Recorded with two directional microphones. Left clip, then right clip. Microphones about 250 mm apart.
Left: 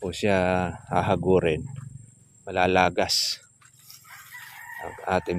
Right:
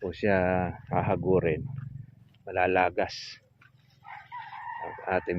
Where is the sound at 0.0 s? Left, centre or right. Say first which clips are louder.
Left 2 dB; centre.